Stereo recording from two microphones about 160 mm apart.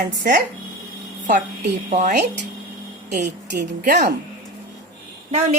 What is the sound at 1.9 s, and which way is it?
Speech, 50° right (ahead or behind).